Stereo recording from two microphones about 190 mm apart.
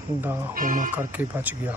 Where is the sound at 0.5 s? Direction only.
45° right (ahead or behind).